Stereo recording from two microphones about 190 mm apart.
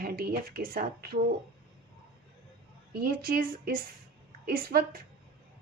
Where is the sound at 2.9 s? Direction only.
55° right (ahead or behind).